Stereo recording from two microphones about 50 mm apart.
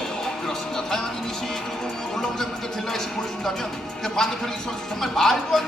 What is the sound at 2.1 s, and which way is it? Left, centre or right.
Music, centre.